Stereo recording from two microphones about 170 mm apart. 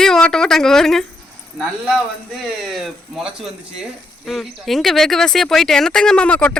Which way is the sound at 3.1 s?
5° right (ahead or behind).